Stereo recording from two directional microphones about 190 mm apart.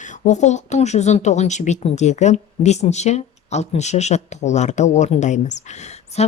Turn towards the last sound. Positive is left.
turn(degrees=35)  # may be behind; listen again after turning